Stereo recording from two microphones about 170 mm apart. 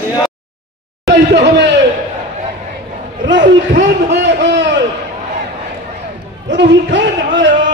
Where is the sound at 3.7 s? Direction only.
90° right.